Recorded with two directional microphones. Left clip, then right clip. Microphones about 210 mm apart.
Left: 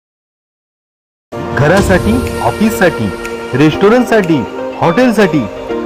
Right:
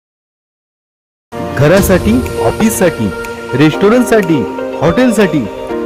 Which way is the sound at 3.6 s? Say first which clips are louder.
Even; 25° right (ahead or behind).